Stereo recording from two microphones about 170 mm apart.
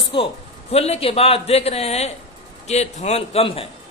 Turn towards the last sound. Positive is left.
turn(degrees=35)  # may be behind; listen again after turning